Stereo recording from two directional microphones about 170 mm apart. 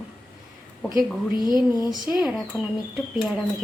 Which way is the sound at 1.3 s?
25° left (ahead or behind).